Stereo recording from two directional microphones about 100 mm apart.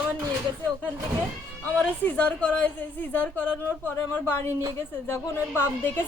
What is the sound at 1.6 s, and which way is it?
A woman's voice, 15° left (ahead or behind).